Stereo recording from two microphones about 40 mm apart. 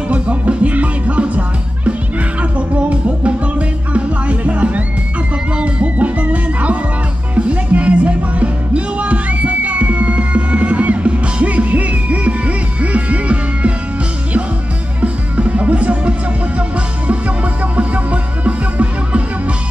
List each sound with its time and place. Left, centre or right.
0.1 s music: right
15.0 s music: right
17.7 s music: right